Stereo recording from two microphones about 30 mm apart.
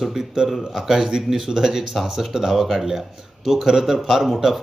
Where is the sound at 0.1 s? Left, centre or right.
Centre.